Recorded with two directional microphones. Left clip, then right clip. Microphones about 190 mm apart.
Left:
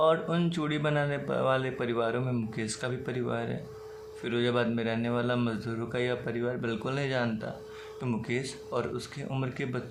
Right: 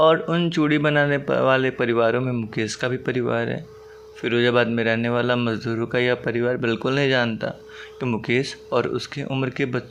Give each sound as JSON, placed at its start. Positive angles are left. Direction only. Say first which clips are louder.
{"t": 0.0, "sound": "speech", "louder": "right 8 dB", "side_deg": -35}